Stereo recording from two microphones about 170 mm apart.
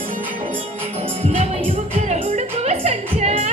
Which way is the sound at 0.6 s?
35° right (ahead or behind).